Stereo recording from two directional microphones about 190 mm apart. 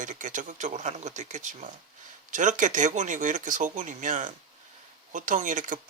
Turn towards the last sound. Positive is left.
turn(degrees=-40)  # may be behind; listen again after turning